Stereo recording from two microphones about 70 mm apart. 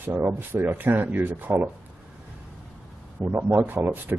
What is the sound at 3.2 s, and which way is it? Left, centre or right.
Speech, right.